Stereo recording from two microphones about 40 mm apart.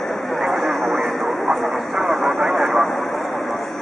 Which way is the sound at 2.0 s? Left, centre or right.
Centre.